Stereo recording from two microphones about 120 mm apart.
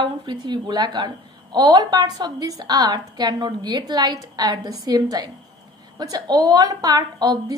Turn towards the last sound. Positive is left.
turn(degrees=-35)  # may be behind; listen again after turning